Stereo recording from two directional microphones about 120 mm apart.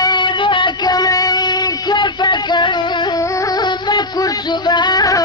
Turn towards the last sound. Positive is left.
turn(degrees=30)  # may be behind; listen again after turning